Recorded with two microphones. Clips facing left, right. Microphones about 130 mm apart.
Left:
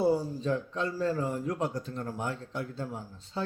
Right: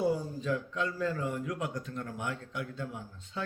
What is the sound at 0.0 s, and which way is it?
A man's voice, 30° left (ahead or behind).